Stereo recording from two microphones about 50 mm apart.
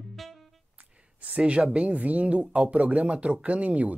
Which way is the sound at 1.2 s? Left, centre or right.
Right.